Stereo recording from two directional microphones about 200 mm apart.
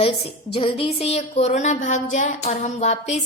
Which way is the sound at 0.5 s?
30° left (ahead or behind).